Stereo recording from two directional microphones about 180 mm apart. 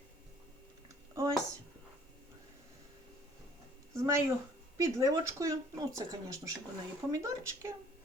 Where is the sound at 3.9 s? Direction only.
15° right (ahead or behind).